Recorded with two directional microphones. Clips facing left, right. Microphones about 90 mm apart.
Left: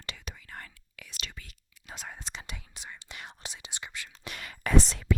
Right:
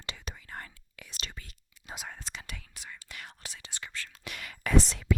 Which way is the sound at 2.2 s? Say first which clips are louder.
Left 1 dB; 25° left (ahead or behind).